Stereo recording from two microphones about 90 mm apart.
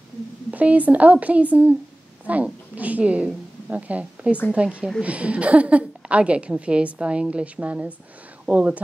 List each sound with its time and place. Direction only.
0.5 s a woman's voice: 15° right (ahead or behind)